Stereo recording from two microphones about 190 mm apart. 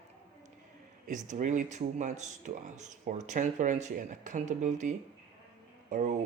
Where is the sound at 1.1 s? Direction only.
40° right (ahead or behind).